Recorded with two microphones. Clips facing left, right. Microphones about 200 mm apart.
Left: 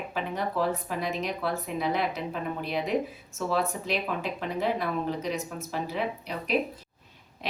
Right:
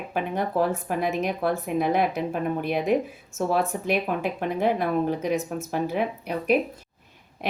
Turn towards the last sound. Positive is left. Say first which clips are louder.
# right 6 dB
turn(degrees=-55)  # may be behind; listen again after turning